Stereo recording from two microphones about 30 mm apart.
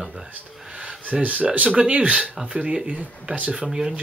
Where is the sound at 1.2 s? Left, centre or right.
Right.